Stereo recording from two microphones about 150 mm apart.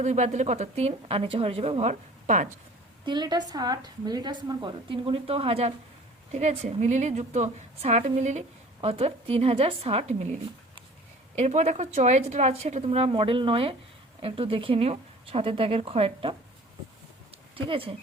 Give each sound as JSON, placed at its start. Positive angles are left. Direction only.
{"t": 0.0, "sound": "a woman's voice", "side_deg": -50}
{"t": 3.0, "sound": "a woman's voice", "side_deg": -30}
{"t": 11.3, "sound": "a woman's voice", "side_deg": -45}
{"t": 17.5, "sound": "speech", "side_deg": -35}